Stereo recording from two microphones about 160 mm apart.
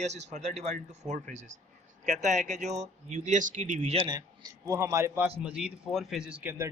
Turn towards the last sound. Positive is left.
turn(degrees=-10)  # may be behind; listen again after turning